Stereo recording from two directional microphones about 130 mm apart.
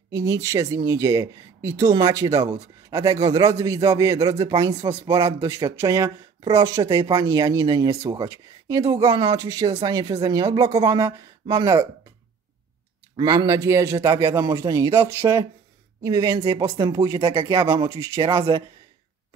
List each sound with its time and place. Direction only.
0.1 s speech: 25° right (ahead or behind)
13.2 s speech: 30° right (ahead or behind)
17.5 s speech: 25° right (ahead or behind)